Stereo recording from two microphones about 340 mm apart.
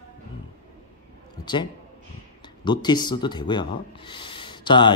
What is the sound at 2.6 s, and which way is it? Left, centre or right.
Speech, centre.